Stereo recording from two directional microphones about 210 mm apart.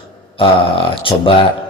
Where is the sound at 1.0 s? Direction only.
25° left (ahead or behind).